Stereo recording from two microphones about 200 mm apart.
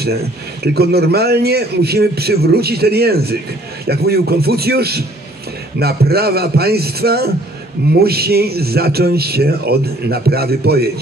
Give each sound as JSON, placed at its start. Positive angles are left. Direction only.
{"t": 0.7, "sound": "speech", "side_deg": -55}